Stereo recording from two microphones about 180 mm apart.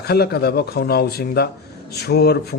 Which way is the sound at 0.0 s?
60° left (ahead or behind).